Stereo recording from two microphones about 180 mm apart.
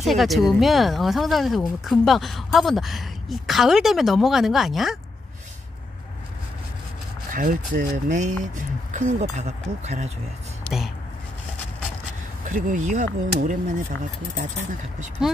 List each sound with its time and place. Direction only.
0.0 s speech: centre (ahead or behind)
7.3 s speech: 50° right (ahead or behind)
10.6 s a sound: centre (ahead or behind)
12.4 s speech: 45° right (ahead or behind)